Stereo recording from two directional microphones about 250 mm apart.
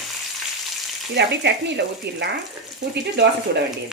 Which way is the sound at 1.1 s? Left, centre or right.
Right.